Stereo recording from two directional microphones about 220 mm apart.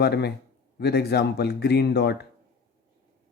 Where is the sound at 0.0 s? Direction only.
50° left (ahead or behind).